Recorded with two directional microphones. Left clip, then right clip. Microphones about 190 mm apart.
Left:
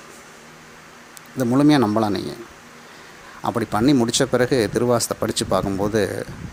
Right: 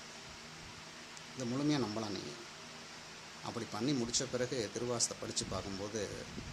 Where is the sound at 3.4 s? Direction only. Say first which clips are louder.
Left 19 dB; 50° left (ahead or behind).